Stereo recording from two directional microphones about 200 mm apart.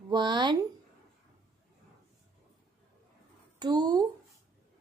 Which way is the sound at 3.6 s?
20° right (ahead or behind).